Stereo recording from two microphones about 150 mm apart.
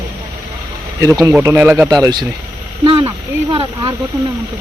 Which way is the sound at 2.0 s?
30° right (ahead or behind).